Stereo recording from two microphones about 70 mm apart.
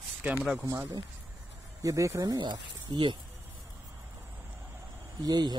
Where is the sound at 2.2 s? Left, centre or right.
Right.